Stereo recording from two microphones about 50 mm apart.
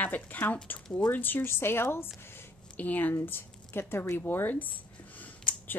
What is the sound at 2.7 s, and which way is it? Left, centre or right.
Speech, left.